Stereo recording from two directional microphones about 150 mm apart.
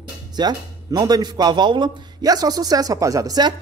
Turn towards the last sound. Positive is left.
turn(degrees=-25)  # may be behind; listen again after turning